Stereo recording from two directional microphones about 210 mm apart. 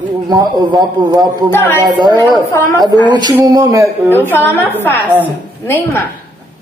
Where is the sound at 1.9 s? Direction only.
20° right (ahead or behind).